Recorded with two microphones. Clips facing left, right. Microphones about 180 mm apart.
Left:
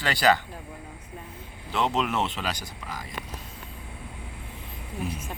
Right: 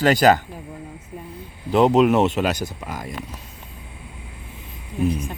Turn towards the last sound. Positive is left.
turn(degrees=5)  # may be behind; listen again after turning